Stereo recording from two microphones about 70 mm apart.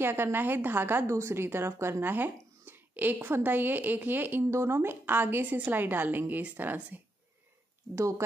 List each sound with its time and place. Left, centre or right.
0.0 s a woman's voice: right
1.0 s speech: right
4.5 s a woman's voice: right